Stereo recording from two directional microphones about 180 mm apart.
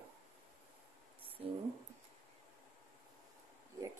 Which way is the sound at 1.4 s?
35° right (ahead or behind).